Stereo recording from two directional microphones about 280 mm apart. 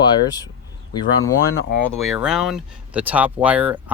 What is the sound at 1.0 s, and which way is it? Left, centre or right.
Speech, left.